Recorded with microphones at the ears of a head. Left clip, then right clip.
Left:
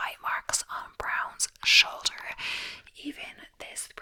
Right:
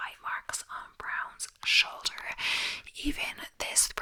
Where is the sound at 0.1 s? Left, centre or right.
Left.